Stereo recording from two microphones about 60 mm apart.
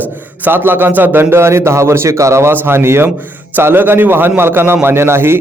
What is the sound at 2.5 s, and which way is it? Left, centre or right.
A man's voice, right.